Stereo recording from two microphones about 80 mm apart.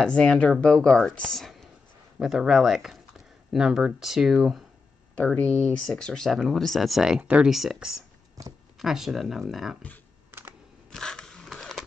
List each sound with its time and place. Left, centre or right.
0.0 s speech: centre
2.1 s speech: centre
5.5 s speech: centre
7.5 s speech: centre
8.4 s speech: right
8.7 s speech: centre
10.9 s a sound: centre